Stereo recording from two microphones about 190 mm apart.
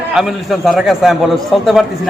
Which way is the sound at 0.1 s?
Centre (ahead or behind).